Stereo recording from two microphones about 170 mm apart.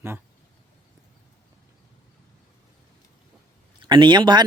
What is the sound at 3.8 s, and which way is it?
Speech, 30° right (ahead or behind).